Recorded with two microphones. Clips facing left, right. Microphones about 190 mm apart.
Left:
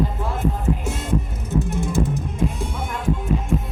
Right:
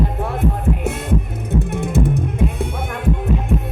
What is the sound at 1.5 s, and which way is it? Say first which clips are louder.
Music: right 2 dB; 60° right (ahead or behind).